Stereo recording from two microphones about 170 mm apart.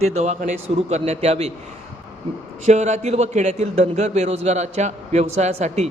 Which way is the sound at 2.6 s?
45° right (ahead or behind).